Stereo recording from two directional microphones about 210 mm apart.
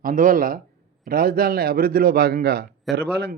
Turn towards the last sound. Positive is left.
turn(degrees=-50)  # may be behind; listen again after turning